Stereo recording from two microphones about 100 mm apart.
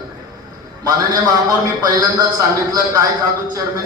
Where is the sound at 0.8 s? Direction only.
40° right (ahead or behind).